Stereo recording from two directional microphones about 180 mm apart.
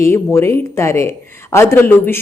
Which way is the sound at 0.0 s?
15° left (ahead or behind).